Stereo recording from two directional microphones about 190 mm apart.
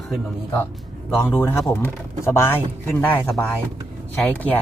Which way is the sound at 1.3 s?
10° left (ahead or behind).